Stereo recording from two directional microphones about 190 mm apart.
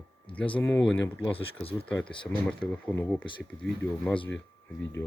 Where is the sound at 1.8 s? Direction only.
5° left (ahead or behind).